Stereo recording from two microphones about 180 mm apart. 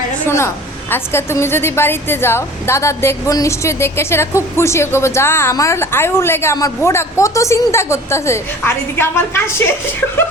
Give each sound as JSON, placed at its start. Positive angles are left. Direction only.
{"t": 0.3, "sound": "a woman's voice", "side_deg": 15}